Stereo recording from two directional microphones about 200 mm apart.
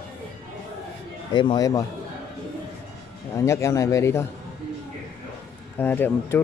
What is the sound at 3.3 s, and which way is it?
Speech, 15° left (ahead or behind).